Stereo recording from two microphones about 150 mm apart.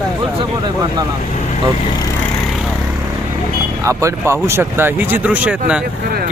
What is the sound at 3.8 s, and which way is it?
Speech, 20° right (ahead or behind).